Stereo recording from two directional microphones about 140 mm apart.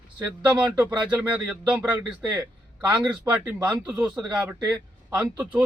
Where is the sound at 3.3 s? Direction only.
10° right (ahead or behind).